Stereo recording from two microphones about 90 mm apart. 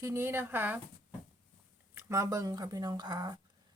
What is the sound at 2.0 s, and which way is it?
A woman's voice, 35° right (ahead or behind).